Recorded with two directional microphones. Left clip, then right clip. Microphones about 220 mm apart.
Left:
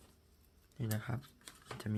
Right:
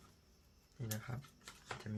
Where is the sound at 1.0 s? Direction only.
40° left (ahead or behind).